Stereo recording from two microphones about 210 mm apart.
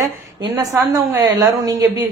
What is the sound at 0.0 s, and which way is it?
A woman's voice, 15° right (ahead or behind).